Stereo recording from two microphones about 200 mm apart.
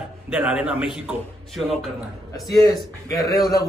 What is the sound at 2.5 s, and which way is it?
A man's voice, 15° left (ahead or behind).